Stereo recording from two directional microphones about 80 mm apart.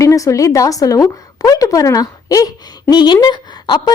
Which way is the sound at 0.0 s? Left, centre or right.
Left.